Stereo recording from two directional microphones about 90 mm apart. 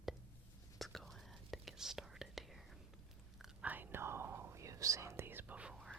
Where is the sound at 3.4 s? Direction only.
15° right (ahead or behind).